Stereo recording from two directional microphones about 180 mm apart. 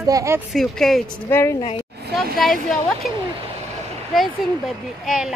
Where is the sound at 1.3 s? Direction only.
15° left (ahead or behind).